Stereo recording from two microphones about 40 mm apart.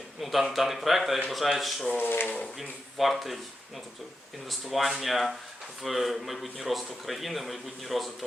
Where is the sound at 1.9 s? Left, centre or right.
Left.